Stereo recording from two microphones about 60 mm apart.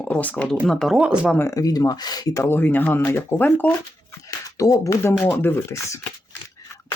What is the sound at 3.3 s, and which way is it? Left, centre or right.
Speech, left.